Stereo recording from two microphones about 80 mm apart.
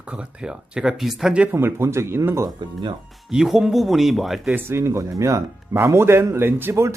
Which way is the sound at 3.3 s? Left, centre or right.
Centre.